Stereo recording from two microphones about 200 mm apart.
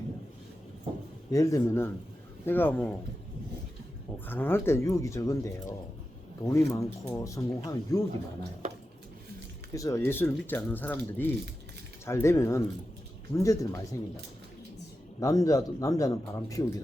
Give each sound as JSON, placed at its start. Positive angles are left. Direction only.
{"t": 1.3, "sound": "speech", "side_deg": 15}
{"t": 4.3, "sound": "speech", "side_deg": 10}
{"t": 9.7, "sound": "speech", "side_deg": 15}
{"t": 15.2, "sound": "speech", "side_deg": 15}